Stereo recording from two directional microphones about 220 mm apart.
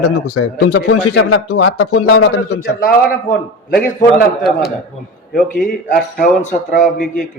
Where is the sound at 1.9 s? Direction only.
55° left (ahead or behind).